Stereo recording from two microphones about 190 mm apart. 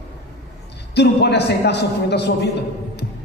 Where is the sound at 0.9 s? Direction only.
60° left (ahead or behind).